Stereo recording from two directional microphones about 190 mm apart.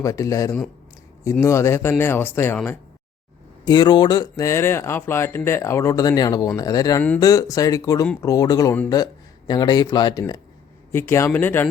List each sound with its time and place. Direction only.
0.0 s speech: 15° left (ahead or behind)
3.7 s speech: 20° left (ahead or behind)